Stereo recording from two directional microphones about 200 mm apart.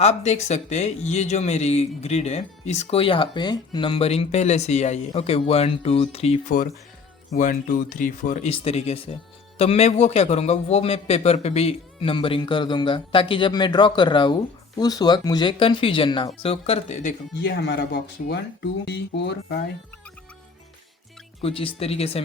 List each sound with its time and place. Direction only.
0.0 s a man's voice: 35° left (ahead or behind)
17.3 s speech: 55° left (ahead or behind)
21.4 s a man's voice: 25° left (ahead or behind)